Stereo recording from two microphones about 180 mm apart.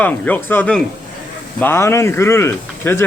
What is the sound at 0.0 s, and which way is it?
Speech, 10° left (ahead or behind).